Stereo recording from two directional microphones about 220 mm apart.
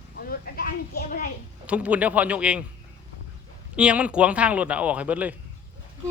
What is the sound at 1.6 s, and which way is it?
Speech, 5° right (ahead or behind).